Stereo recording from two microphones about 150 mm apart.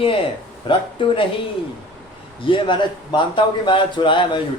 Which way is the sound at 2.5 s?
35° left (ahead or behind).